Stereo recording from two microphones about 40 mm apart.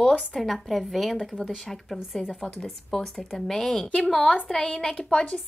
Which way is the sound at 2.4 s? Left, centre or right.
Centre.